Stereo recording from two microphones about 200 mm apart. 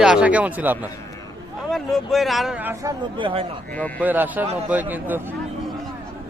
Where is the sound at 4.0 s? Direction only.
10° right (ahead or behind).